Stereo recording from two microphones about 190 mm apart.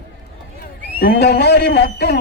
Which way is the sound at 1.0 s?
55° left (ahead or behind).